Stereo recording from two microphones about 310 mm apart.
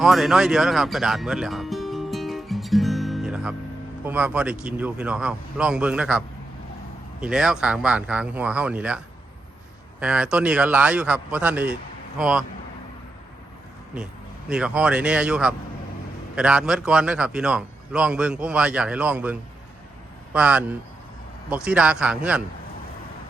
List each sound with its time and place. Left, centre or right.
0.0 s music: centre
4.0 s a man's voice: centre
10.0 s a man's voice: centre
14.5 s a man's voice: centre